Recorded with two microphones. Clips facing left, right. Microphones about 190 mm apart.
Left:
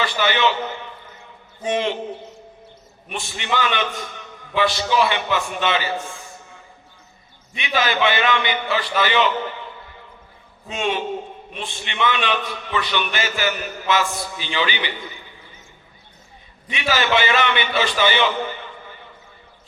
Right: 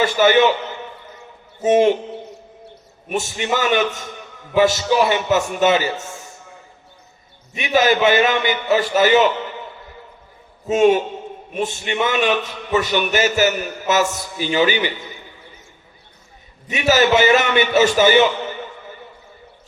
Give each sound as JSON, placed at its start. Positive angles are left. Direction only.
{"t": 0.0, "sound": "a man's voice", "side_deg": -45}
{"t": 1.6, "sound": "a man's voice", "side_deg": -45}
{"t": 3.1, "sound": "a man's voice", "side_deg": -45}
{"t": 7.5, "sound": "a man's voice", "side_deg": -45}
{"t": 10.7, "sound": "a man's voice", "side_deg": -45}
{"t": 16.6, "sound": "a man's voice", "side_deg": -45}